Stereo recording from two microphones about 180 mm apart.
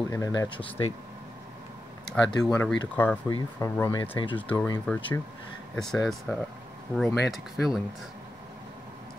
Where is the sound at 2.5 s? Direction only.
15° left (ahead or behind).